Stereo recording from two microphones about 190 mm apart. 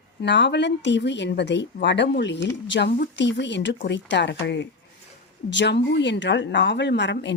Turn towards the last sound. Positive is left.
turn(degrees=65)  # may be behind; listen again after turning